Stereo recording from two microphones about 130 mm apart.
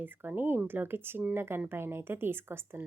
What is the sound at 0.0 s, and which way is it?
Speech, 15° right (ahead or behind).